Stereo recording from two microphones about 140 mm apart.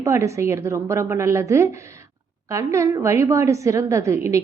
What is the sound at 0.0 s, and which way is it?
A woman's voice, 20° right (ahead or behind).